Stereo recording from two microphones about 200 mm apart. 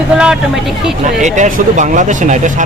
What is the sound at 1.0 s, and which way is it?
Speech, 35° right (ahead or behind).